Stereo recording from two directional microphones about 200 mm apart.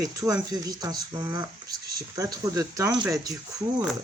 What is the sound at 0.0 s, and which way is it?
Speech, 15° right (ahead or behind).